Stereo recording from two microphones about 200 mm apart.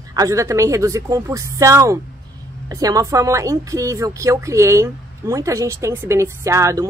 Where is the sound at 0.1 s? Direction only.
15° right (ahead or behind).